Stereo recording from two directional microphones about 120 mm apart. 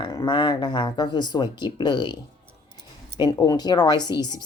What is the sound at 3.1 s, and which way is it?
Speech, 35° left (ahead or behind).